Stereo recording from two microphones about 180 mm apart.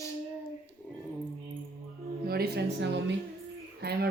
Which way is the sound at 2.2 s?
60° right (ahead or behind).